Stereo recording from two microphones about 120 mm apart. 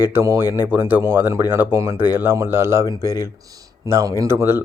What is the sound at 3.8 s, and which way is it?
Speech, 25° right (ahead or behind).